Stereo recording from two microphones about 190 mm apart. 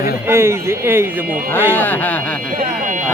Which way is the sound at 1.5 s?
10° left (ahead or behind).